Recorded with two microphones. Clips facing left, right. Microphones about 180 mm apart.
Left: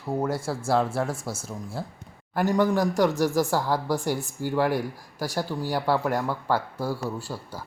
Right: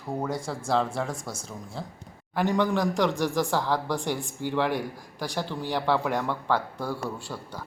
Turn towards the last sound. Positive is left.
turn(degrees=5)  # may be behind; listen again after turning